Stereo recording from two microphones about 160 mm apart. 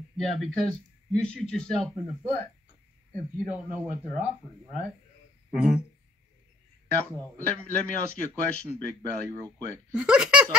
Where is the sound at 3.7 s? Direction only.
50° right (ahead or behind).